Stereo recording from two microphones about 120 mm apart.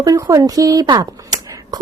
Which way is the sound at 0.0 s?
30° right (ahead or behind).